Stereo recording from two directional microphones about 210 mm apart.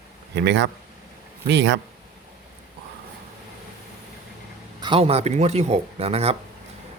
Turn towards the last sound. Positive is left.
turn(degrees=-30)  # may be behind; listen again after turning